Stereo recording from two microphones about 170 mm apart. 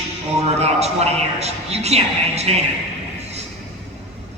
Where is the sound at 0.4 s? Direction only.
40° right (ahead or behind).